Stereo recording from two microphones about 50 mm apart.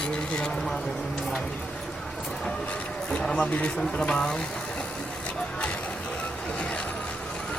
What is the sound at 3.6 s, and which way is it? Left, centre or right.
Speech, centre.